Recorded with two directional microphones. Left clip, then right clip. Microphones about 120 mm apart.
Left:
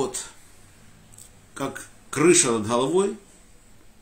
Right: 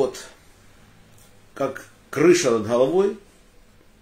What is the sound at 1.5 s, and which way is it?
Speech, 20° left (ahead or behind).